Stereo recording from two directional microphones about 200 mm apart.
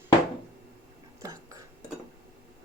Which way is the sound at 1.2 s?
15° right (ahead or behind).